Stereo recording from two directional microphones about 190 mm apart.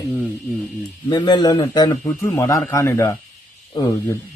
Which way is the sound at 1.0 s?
20° left (ahead or behind).